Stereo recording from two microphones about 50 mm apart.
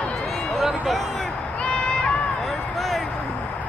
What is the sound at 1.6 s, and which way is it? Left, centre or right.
Run, centre.